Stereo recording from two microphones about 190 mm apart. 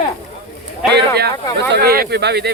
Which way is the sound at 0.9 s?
60° right (ahead or behind).